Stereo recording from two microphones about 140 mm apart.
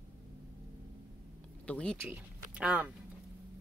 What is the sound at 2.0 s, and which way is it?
Speech, 10° right (ahead or behind).